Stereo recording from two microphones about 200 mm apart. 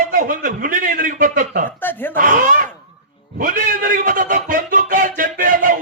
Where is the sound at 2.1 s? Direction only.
40° right (ahead or behind).